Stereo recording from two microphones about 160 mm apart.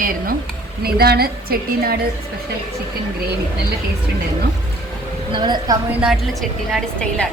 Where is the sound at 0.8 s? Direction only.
75° right (ahead or behind).